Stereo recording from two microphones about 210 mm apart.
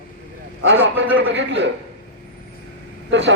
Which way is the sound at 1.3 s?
55° right (ahead or behind).